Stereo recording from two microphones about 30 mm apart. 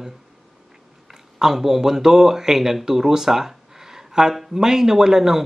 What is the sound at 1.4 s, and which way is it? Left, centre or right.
Speech, centre.